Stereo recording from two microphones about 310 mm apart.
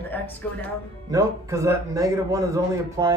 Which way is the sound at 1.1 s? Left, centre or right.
Centre.